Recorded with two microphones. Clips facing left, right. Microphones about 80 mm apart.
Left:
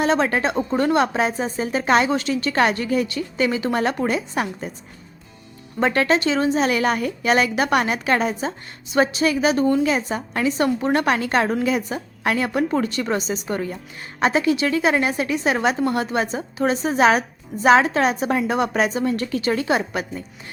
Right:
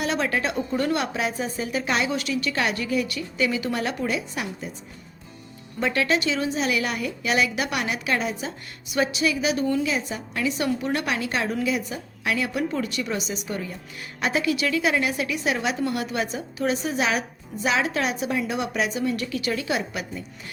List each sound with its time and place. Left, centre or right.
0.0 s a woman's voice: left
5.8 s a woman's voice: left
14.2 s a woman's voice: left